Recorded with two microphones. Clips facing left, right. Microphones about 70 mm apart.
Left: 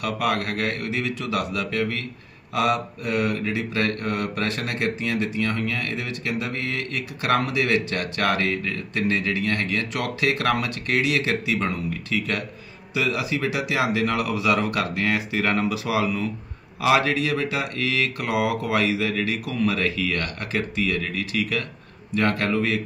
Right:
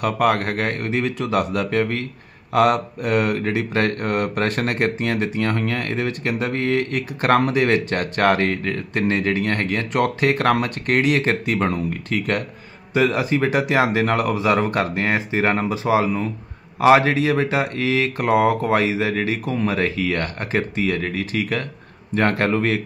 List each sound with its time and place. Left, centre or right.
0.0 s speech: right